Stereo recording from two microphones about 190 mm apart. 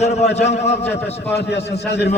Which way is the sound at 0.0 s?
35° left (ahead or behind).